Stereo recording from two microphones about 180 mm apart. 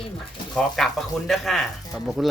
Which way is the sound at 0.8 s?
Centre (ahead or behind).